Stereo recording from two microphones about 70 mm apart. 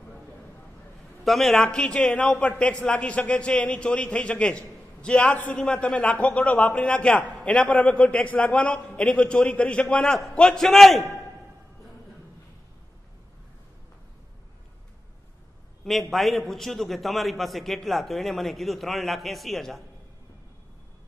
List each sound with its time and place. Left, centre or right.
1.2 s a man's voice: centre
15.8 s a man's voice: centre